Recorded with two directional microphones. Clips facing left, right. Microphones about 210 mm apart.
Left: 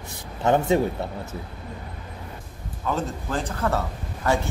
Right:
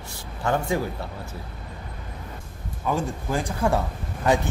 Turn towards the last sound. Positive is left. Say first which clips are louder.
# right 2 dB
turn(degrees=-15)  # may be behind; listen again after turning